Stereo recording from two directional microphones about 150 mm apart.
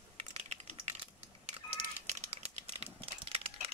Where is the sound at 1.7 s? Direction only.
50° right (ahead or behind).